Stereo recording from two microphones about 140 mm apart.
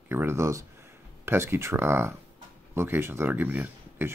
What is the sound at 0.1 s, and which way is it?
Speech, 15° right (ahead or behind).